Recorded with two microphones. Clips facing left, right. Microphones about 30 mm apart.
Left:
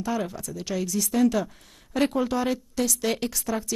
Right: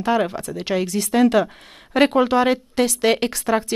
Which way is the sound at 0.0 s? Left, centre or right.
Right.